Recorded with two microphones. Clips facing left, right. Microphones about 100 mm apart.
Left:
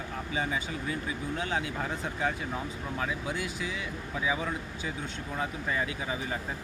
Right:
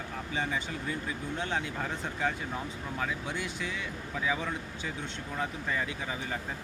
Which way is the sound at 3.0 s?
10° left (ahead or behind).